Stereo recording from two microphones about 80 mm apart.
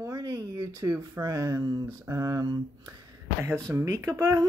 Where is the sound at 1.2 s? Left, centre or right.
Right.